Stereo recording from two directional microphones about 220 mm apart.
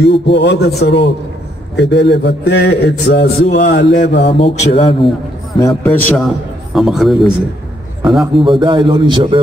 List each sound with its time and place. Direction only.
0.0 s a man's voice: 50° left (ahead or behind)
4.3 s mantra: 25° left (ahead or behind)
5.6 s a man's voice: 10° left (ahead or behind)
8.4 s a man's voice: 20° right (ahead or behind)